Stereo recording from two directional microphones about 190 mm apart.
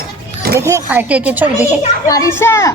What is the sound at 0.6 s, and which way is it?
A child's voice, 15° right (ahead or behind).